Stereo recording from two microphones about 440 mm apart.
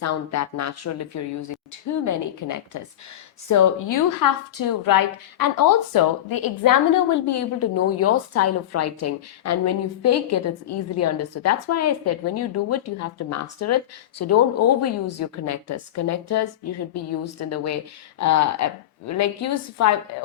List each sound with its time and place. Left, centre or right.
0.0 s a woman's voice: left